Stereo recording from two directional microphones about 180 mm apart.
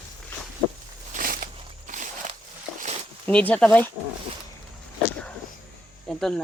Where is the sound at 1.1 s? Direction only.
50° right (ahead or behind).